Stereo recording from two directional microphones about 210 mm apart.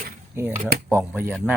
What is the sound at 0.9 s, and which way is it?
Speech, 10° right (ahead or behind).